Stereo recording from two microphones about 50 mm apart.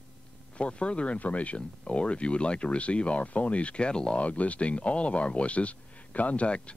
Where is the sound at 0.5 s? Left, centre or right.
Left.